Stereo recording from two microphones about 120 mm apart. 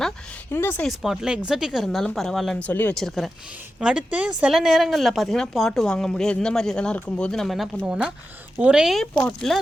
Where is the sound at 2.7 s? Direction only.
15° left (ahead or behind).